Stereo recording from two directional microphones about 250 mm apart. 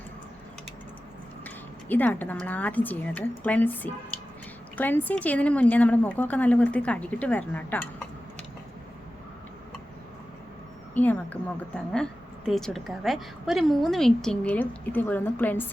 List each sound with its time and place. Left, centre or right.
1.5 s a woman's voice: centre
10.9 s a woman's voice: centre